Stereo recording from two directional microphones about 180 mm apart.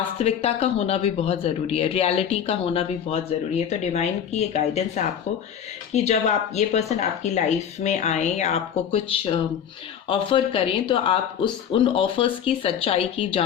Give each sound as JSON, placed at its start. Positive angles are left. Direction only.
{"t": 0.2, "sound": "speech", "side_deg": 35}